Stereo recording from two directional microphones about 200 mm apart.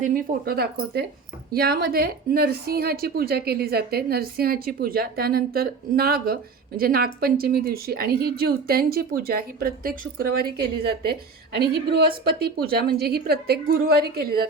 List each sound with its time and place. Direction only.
0.0 s a woman's voice: 50° right (ahead or behind)